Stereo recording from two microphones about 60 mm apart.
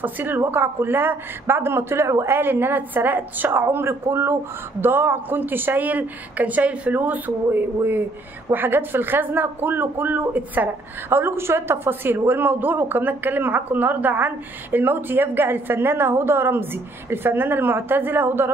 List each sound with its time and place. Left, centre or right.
0.0 s speech: right